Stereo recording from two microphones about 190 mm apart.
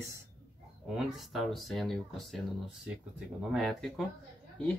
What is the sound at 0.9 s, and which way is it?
Speech, centre (ahead or behind).